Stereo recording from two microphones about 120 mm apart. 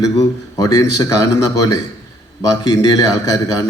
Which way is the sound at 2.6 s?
30° left (ahead or behind).